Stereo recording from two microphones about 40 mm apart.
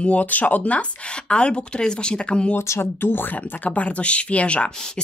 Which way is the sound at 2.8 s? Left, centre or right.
Left.